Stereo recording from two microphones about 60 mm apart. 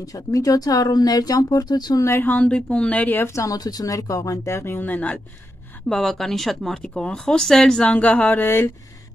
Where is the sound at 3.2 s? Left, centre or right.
Left.